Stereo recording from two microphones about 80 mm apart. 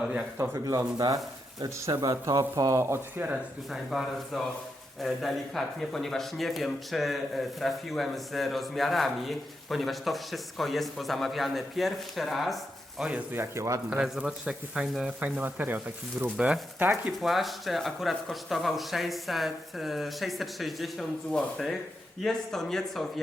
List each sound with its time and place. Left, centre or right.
0.0 s speech: centre
0.5 s speech: right
2.2 s speech: right
3.7 s speech: centre
13.3 s speech: right
14.0 s speech: centre
15.2 s speech: right
17.1 s speech: centre